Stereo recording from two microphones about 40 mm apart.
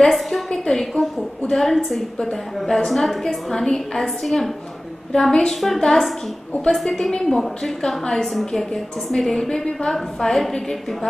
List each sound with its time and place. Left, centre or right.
0.0 s a woman's voice: centre
5.5 s a woman's voice: centre